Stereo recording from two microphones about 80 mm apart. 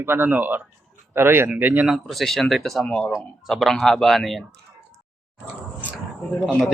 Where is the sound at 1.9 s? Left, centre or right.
Centre.